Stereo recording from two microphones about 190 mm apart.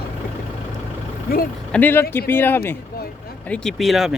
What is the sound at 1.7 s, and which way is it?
Speech, 10° left (ahead or behind).